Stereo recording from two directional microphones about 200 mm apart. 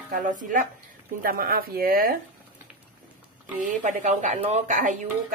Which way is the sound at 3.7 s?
40° right (ahead or behind).